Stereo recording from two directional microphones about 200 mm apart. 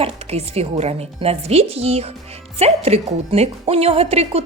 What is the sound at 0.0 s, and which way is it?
Speech, 30° right (ahead or behind).